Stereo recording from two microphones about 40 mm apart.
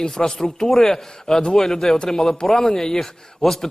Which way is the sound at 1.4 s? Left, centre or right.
Left.